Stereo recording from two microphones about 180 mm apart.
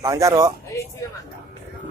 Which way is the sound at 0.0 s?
15° right (ahead or behind).